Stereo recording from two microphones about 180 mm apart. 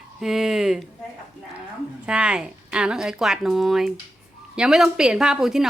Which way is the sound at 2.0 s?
5° right (ahead or behind).